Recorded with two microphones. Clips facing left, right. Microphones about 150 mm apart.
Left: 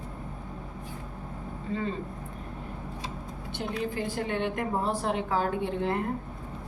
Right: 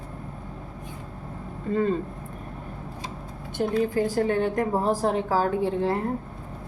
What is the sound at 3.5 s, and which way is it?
A woman's voice, 40° right (ahead or behind).